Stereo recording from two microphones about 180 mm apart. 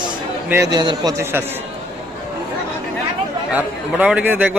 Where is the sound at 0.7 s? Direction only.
25° right (ahead or behind).